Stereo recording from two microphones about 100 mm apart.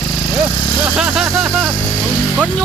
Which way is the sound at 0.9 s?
5° right (ahead or behind).